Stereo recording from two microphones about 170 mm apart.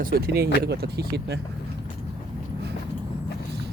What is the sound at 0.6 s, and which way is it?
Speech, 70° right (ahead or behind).